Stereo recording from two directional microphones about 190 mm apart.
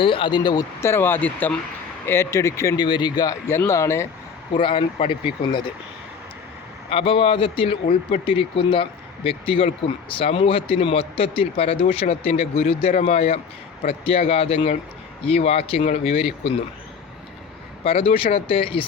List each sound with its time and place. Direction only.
0.0 s speech: 25° left (ahead or behind)
4.5 s speech: 25° left (ahead or behind)
6.9 s speech: 30° left (ahead or behind)
17.8 s speech: 30° left (ahead or behind)